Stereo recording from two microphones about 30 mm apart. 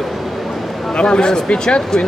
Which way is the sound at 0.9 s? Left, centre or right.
Left.